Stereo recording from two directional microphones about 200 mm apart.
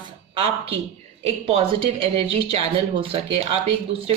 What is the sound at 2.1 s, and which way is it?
Speech, 30° right (ahead or behind).